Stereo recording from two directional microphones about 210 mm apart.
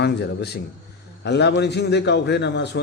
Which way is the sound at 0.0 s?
50° left (ahead or behind).